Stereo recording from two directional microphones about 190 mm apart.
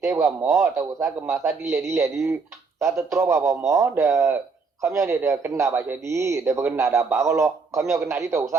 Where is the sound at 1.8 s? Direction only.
15° right (ahead or behind).